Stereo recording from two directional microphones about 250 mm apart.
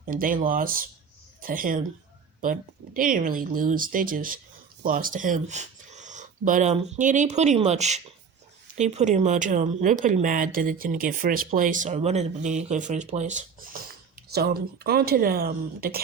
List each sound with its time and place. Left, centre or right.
0.0 s speech: right